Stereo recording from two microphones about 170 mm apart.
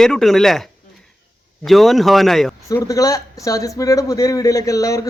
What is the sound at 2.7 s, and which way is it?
A man's voice, 20° left (ahead or behind).